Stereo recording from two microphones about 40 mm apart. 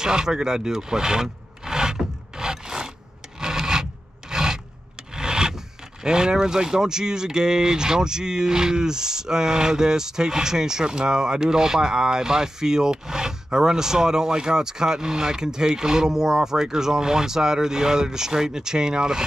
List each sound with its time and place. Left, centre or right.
0.0 s wood: centre
3.3 s rub: centre
4.3 s filing: centre
5.1 s rub: centre
6.0 s speech: centre